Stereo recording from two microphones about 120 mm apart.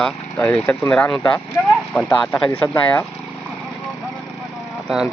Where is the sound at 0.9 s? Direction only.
5° left (ahead or behind).